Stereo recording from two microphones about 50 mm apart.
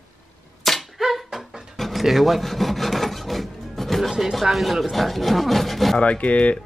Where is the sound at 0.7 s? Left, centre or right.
Centre.